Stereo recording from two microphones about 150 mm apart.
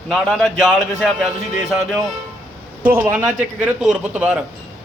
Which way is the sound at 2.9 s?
15° right (ahead or behind).